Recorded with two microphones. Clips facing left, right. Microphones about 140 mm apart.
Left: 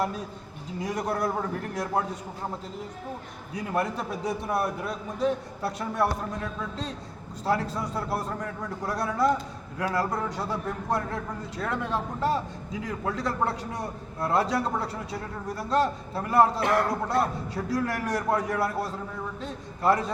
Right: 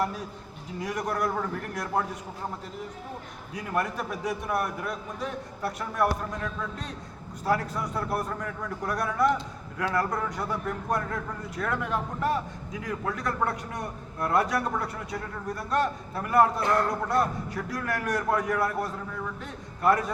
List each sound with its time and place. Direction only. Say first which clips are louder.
0.9 s a man's voice: left 1 dB; 25° left (ahead or behind)
3.7 s a man's voice: left 1 dB; 25° left (ahead or behind)